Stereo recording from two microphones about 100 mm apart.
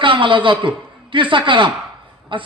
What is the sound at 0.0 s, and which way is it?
A man's voice, 55° right (ahead or behind).